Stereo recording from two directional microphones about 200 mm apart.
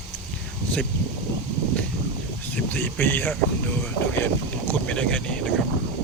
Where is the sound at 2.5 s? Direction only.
10° left (ahead or behind).